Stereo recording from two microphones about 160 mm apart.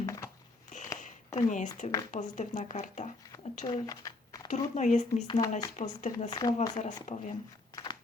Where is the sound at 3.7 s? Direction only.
20° left (ahead or behind).